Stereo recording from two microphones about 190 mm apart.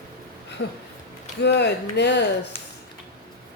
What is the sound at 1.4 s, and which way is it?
Speech, 60° left (ahead or behind).